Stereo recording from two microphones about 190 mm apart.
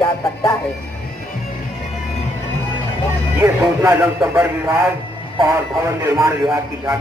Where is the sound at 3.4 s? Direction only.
15° right (ahead or behind).